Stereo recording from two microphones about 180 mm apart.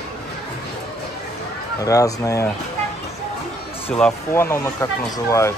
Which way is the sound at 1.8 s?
20° left (ahead or behind).